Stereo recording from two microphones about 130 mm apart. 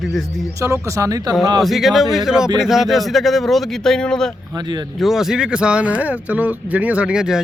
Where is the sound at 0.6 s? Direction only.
25° right (ahead or behind).